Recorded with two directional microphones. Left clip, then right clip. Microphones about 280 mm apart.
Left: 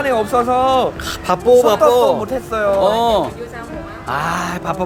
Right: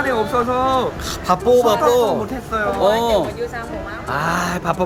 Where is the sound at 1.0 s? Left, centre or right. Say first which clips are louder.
Left 2 dB; centre.